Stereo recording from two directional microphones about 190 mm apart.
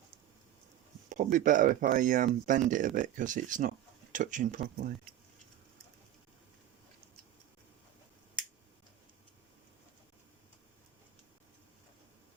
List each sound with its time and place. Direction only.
1.1 s speech: 45° right (ahead or behind)